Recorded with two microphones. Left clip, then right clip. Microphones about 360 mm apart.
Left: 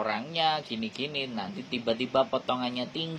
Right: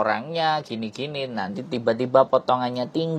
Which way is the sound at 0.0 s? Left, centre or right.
Right.